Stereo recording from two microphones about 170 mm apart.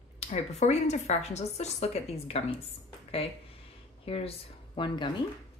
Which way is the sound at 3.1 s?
35° left (ahead or behind).